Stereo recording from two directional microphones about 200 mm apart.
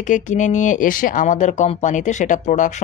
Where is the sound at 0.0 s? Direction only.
40° left (ahead or behind).